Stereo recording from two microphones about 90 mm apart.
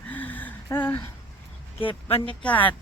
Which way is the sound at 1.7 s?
90° left.